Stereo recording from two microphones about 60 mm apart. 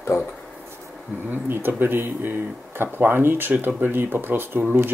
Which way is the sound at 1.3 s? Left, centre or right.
Right.